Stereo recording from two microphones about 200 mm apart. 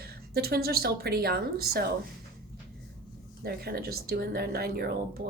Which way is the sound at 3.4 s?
50° right (ahead or behind).